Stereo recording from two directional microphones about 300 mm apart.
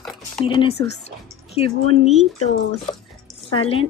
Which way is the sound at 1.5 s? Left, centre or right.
Centre.